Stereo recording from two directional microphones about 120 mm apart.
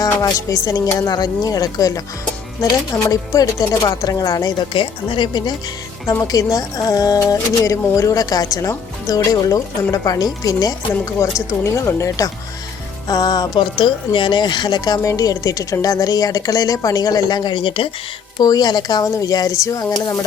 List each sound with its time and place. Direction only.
0.0 s speech: 30° left (ahead or behind); by 17.8 s 45° left (ahead or behind)
18.3 s speech: 35° left (ahead or behind)